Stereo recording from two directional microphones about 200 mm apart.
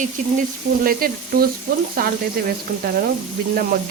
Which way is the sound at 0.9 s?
45° right (ahead or behind).